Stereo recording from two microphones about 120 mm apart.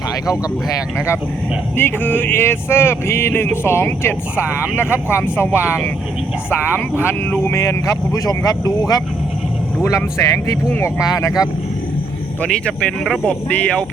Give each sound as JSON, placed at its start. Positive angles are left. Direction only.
{"t": 1.7, "sound": "music", "side_deg": 15}
{"t": 12.4, "sound": "speech", "side_deg": 10}